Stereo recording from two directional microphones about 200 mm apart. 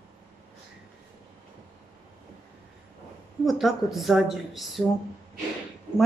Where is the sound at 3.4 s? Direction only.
Centre (ahead or behind).